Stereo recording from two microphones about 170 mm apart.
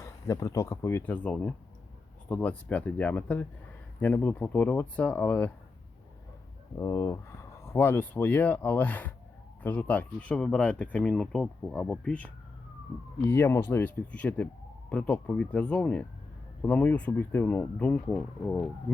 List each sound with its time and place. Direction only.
0.0 s speech: 20° left (ahead or behind)
6.7 s speech: 20° left (ahead or behind)